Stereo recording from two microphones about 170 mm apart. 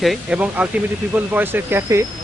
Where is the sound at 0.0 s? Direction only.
5° right (ahead or behind).